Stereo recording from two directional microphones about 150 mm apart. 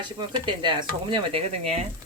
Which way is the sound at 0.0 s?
30° right (ahead or behind).